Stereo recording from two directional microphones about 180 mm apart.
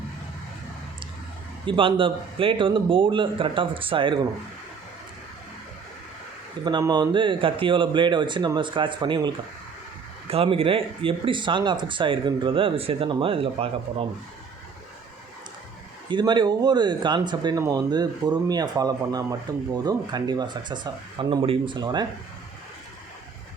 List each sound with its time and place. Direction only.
1.6 s speech: 30° right (ahead or behind)
6.7 s speech: 25° right (ahead or behind)
16.0 s speech: 25° right (ahead or behind)